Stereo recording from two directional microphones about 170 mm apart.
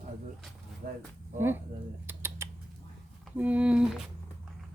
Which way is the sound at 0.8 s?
55° right (ahead or behind).